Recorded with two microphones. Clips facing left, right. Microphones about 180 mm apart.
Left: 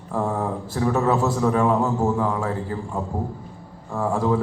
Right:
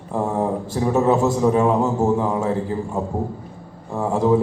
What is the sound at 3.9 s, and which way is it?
Speech, 25° right (ahead or behind).